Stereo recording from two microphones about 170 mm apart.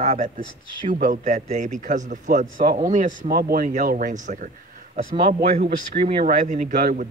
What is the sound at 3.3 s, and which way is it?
A man's voice, 55° right (ahead or behind).